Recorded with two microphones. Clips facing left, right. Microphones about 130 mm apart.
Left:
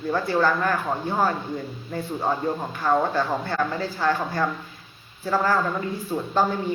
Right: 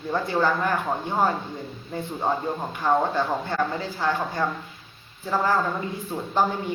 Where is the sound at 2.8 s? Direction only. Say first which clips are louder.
Even; 20° right (ahead or behind).